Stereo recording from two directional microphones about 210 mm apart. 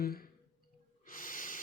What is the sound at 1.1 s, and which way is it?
Snort, 40° left (ahead or behind).